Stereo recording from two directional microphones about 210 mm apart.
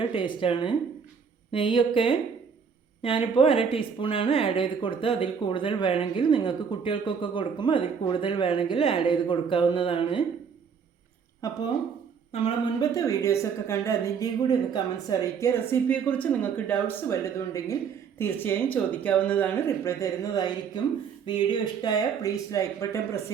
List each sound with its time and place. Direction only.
0.0 s a woman's voice: 25° left (ahead or behind)
11.4 s speech: 15° left (ahead or behind)
12.3 s a woman's voice: 30° left (ahead or behind)